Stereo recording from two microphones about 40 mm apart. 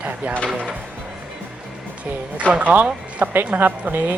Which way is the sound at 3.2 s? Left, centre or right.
Right.